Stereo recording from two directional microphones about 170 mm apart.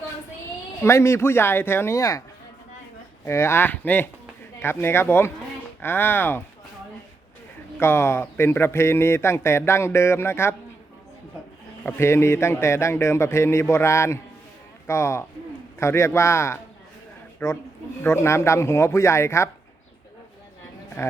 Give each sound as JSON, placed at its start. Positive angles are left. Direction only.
{"t": 0.8, "sound": "a man's voice", "side_deg": 15}
{"t": 3.2, "sound": "a man's voice", "side_deg": 15}
{"t": 7.8, "sound": "a man's voice", "side_deg": 15}
{"t": 11.8, "sound": "a man's voice", "side_deg": 15}
{"t": 21.0, "sound": "a man's voice", "side_deg": 15}